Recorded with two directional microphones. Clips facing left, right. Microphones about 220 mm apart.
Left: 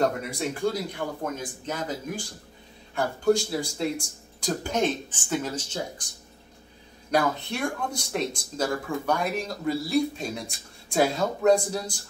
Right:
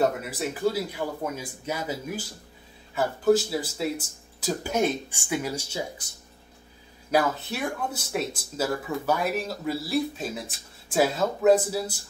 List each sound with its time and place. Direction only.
0.0 s speech: 5° right (ahead or behind)
7.1 s speech: 5° right (ahead or behind)